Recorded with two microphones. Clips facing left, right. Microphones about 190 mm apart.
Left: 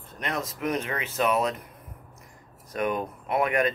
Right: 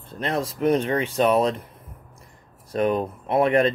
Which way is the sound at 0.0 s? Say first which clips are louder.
Right 6 dB; 30° right (ahead or behind).